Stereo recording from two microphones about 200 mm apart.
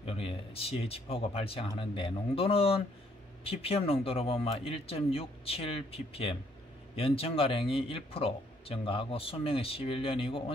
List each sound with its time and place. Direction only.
0.0 s speech: 30° left (ahead or behind)